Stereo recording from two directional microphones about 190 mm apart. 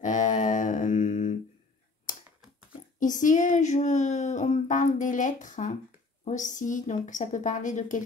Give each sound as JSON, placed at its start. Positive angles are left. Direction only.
{"t": 0.0, "sound": "mantra", "side_deg": 40}
{"t": 2.1, "sound": "a sound", "side_deg": 45}
{"t": 3.0, "sound": "speech", "side_deg": 40}